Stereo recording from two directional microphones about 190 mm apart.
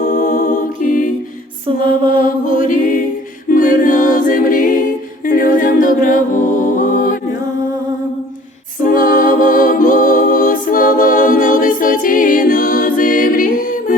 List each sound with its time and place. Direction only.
0.1 s music: 45° left (ahead or behind)
1.6 s music: 25° right (ahead or behind)
2.2 s mantra: 45° left (ahead or behind)
3.5 s a capella: 45° left (ahead or behind)
8.8 s a capella: 45° left (ahead or behind)